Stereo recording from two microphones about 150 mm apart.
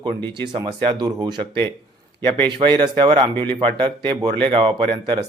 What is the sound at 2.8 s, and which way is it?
Speech, 30° right (ahead or behind).